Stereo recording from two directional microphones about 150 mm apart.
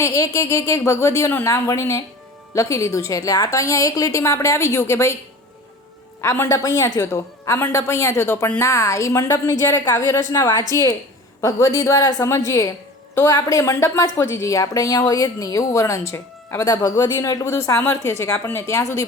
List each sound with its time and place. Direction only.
0.0 s a woman's voice: 20° left (ahead or behind)
6.2 s a woman's voice: 20° left (ahead or behind)